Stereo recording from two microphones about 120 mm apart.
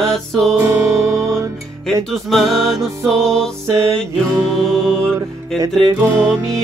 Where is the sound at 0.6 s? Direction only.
25° right (ahead or behind).